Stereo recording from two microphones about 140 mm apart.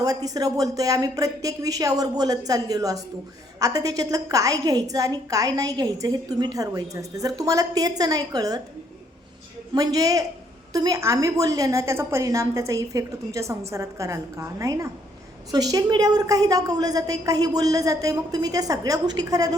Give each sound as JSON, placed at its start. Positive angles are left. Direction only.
{"t": 0.0, "sound": "a woman's voice", "side_deg": -25}
{"t": 9.7, "sound": "a woman's voice", "side_deg": -25}